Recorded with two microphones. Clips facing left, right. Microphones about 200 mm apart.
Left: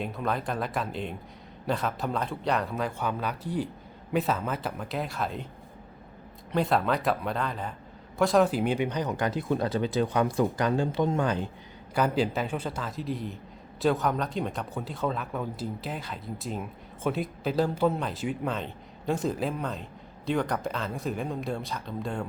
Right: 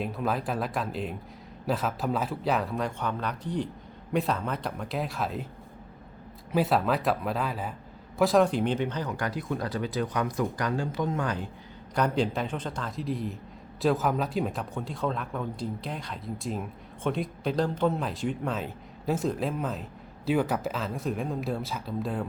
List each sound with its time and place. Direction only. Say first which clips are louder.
0.0 s speech: right 1 dB; centre (ahead or behind)
6.5 s speech: right 1 dB; 5° right (ahead or behind); by 11.4 s 25° left (ahead or behind)
11.9 s speech: left 1 dB; 5° left (ahead or behind)